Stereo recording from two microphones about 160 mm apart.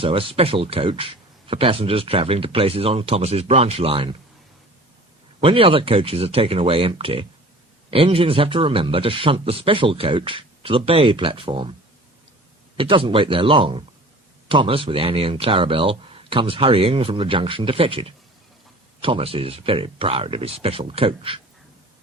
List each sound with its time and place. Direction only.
0.0 s speech: 35° right (ahead or behind)
5.4 s speech: 35° right (ahead or behind)
12.7 s speech: 35° right (ahead or behind)